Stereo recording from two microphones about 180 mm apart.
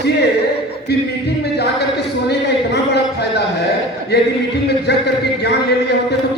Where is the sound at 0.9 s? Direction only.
65° left (ahead or behind).